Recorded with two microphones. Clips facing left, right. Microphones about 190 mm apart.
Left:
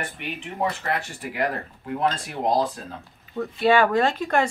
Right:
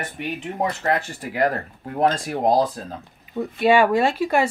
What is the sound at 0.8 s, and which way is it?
Speech, 40° right (ahead or behind).